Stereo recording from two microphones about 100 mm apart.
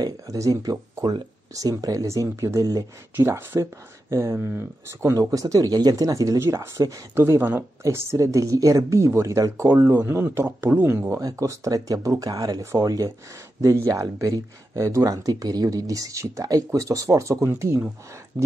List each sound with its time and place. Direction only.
0.0 s speech: 35° right (ahead or behind)
3.2 s speech: 25° right (ahead or behind)